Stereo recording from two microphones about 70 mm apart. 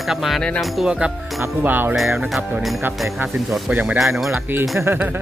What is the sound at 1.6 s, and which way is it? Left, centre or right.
Jingle bell, right.